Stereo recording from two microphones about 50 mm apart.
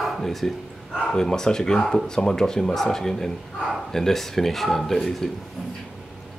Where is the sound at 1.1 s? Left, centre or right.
Centre.